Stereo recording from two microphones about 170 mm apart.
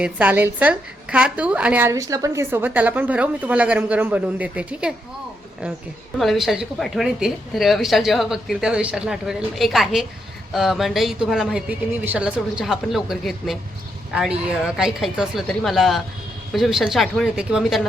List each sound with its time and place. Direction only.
0.0 s a woman's voice: 10° right (ahead or behind)
6.1 s a woman's voice: centre (ahead or behind)